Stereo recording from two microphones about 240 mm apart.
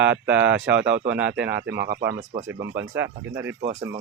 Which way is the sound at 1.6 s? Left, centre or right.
Right.